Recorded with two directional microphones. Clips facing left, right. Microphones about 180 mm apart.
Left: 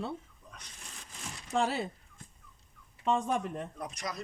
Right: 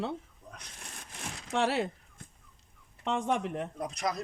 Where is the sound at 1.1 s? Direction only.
80° right.